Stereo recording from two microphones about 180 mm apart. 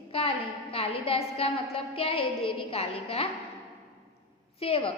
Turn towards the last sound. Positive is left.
turn(degrees=30)  # may be behind; listen again after turning